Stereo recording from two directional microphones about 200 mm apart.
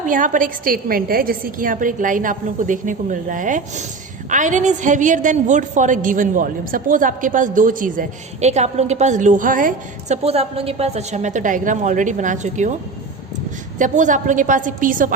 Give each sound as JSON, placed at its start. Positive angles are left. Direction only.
{"t": 0.1, "sound": "a woman's voice", "side_deg": -40}
{"t": 13.7, "sound": "a woman's voice", "side_deg": -40}